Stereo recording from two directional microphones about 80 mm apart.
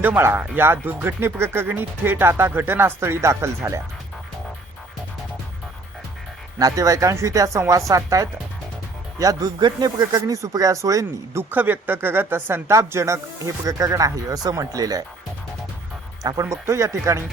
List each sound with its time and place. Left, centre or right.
0.2 s speech: right
6.6 s speech: right
9.6 s speech: right
10.2 s speech: right
11.5 s speech: right
16.2 s speech: right